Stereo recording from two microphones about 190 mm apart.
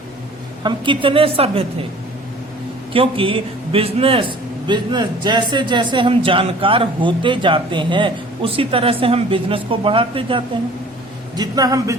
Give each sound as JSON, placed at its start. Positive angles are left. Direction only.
{"t": 0.6, "sound": "a man's voice", "side_deg": -25}
{"t": 2.9, "sound": "a man's voice", "side_deg": -30}